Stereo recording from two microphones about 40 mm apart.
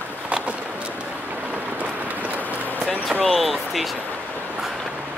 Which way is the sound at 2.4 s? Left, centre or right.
Left.